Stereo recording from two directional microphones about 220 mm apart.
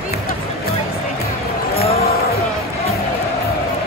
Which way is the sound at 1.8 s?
30° left (ahead or behind).